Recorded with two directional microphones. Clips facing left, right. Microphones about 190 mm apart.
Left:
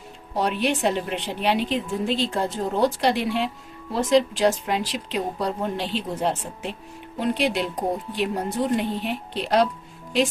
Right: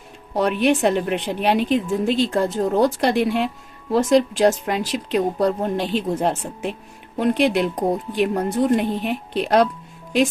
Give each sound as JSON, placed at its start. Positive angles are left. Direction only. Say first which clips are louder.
{"t": 0.3, "sound": "a woman's voice", "louder": "right 5 dB", "side_deg": -55}